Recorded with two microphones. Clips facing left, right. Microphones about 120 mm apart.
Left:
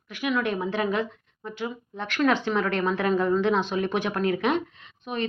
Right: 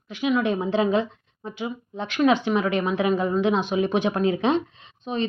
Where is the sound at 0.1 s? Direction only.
20° right (ahead or behind).